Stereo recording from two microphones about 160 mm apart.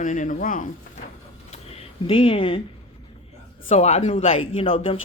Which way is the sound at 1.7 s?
35° left (ahead or behind).